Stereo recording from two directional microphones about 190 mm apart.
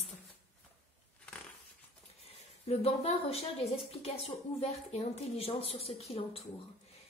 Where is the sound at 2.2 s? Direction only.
30° left (ahead or behind).